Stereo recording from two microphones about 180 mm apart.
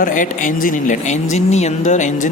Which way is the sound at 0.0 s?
45° left (ahead or behind).